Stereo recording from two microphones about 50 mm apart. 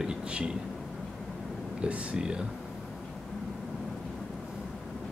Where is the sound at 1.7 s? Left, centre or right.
Right.